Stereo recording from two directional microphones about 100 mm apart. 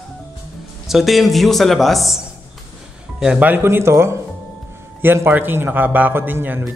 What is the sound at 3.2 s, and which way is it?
A man's voice, 10° right (ahead or behind).